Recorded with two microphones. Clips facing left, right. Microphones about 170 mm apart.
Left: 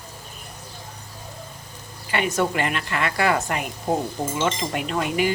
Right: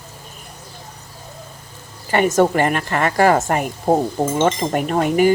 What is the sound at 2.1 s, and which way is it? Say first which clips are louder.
A woman's voice: right 8 dB; 45° right (ahead or behind).